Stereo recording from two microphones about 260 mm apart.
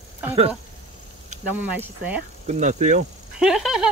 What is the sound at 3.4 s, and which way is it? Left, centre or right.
Speech, centre.